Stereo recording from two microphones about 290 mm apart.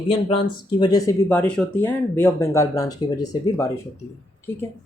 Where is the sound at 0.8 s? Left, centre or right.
Centre.